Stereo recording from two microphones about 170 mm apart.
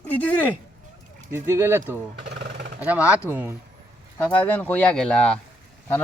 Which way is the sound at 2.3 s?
75° right (ahead or behind).